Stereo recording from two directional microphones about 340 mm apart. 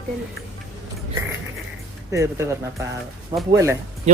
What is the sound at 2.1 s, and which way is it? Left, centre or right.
Speech, centre.